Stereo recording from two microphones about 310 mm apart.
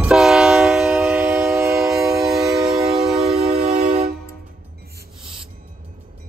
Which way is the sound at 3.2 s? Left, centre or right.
Centre.